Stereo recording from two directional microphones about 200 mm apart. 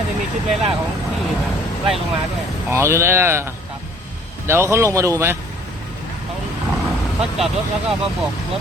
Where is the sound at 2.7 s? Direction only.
15° right (ahead or behind).